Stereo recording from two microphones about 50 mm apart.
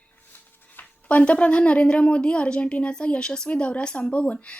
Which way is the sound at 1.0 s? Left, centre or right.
Left.